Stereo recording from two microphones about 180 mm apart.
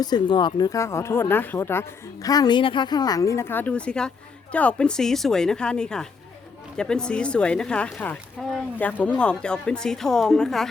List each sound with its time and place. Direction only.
0.0 s speech: 25° left (ahead or behind); by 10.7 s 5° left (ahead or behind)